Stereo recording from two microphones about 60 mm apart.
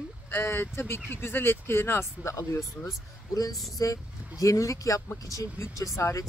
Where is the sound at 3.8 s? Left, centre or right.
Left.